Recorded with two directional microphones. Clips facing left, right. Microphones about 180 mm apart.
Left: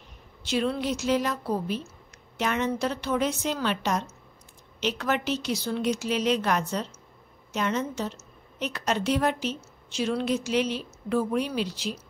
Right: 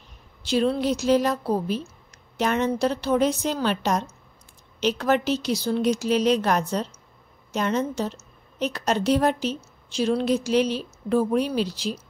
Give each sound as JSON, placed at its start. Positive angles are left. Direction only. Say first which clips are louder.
{"t": 0.5, "sound": "a woman's voice", "louder": "right 5 dB", "side_deg": -35}